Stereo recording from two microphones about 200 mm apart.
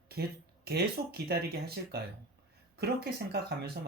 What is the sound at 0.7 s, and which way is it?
Speech, 50° right (ahead or behind).